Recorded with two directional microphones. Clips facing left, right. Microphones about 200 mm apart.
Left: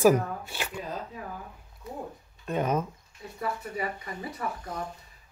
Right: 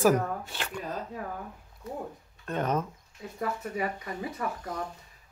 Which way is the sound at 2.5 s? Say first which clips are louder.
Left 2 dB; 10° left (ahead or behind).